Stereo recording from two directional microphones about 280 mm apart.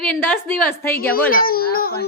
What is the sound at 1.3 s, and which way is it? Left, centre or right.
Baby cry, left.